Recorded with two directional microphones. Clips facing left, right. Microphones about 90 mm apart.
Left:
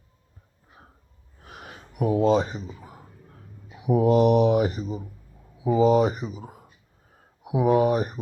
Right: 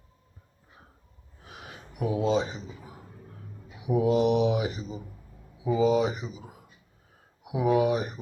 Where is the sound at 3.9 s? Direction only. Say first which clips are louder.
Left 4 dB; 45° left (ahead or behind).